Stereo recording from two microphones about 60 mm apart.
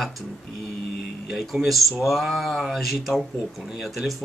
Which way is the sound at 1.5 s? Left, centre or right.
Right.